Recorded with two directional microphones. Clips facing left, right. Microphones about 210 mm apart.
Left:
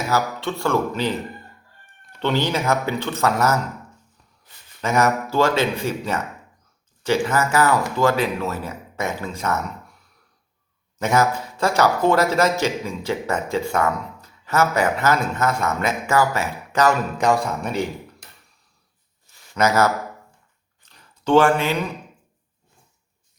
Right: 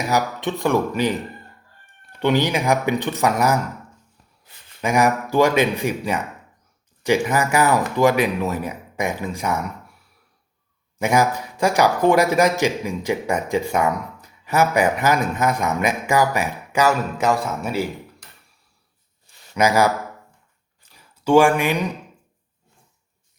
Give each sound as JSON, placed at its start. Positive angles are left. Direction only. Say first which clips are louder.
{"t": 0.1, "sound": "a man's voice", "louder": "right 1 dB", "side_deg": -15}
{"t": 4.8, "sound": "a man's voice", "louder": "right 1 dB", "side_deg": -15}
{"t": 11.0, "sound": "a man's voice", "louder": "right 1 dB", "side_deg": -15}
{"t": 19.5, "sound": "a man's voice", "louder": "right 1 dB", "side_deg": -10}
{"t": 20.8, "sound": "a sound", "louder": "right 2 dB", "side_deg": -10}